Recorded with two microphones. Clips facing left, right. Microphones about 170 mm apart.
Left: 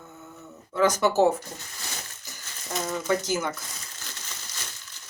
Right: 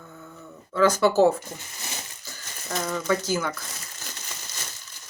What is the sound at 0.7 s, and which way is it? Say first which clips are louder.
Speech: right 2 dB; 20° left (ahead or behind).